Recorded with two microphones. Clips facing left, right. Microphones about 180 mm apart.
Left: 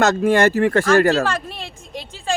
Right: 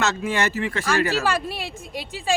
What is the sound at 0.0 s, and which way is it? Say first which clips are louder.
Speech: left 8 dB; 50° left (ahead or behind).